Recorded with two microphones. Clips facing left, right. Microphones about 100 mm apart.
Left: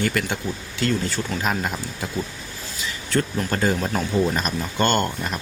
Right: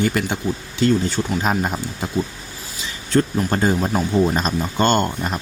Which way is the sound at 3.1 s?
25° right (ahead or behind).